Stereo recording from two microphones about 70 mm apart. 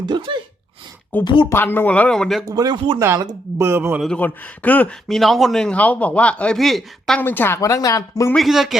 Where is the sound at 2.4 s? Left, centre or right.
Right.